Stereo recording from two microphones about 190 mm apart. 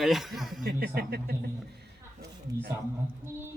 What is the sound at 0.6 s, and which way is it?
Speech, 50° right (ahead or behind).